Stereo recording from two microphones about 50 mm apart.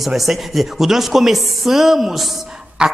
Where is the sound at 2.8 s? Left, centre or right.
Centre.